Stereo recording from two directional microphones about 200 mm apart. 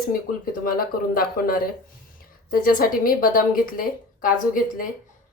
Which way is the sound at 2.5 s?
45° left (ahead or behind).